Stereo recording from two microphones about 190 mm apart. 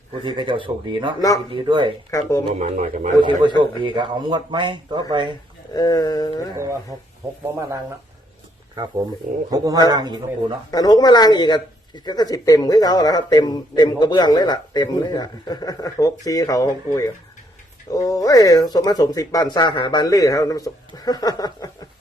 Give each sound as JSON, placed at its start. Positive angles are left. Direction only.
{"t": 0.2, "sound": "a man's voice", "side_deg": -25}
{"t": 2.0, "sound": "speech", "side_deg": 15}
{"t": 2.6, "sound": "speech", "side_deg": -40}
{"t": 3.2, "sound": "a man's voice", "side_deg": -25}
{"t": 5.7, "sound": "speech", "side_deg": 20}
{"t": 9.5, "sound": "a man's voice", "side_deg": -20}
{"t": 10.7, "sound": "speech", "side_deg": 20}